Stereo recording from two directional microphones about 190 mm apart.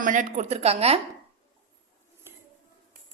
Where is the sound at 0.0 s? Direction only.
45° right (ahead or behind).